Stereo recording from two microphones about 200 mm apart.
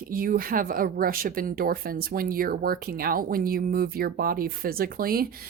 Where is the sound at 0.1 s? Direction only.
45° right (ahead or behind).